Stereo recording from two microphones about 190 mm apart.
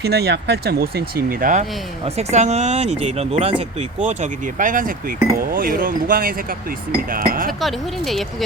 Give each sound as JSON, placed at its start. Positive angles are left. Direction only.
{"t": 0.0, "sound": "speech", "side_deg": -60}
{"t": 2.0, "sound": "speech", "side_deg": -35}
{"t": 7.6, "sound": "speech", "side_deg": 0}